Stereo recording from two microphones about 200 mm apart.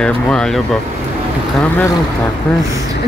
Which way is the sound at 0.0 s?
5° left (ahead or behind).